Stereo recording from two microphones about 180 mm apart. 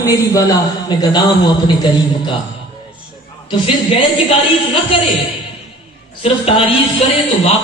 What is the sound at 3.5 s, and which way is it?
Speech, 25° left (ahead or behind).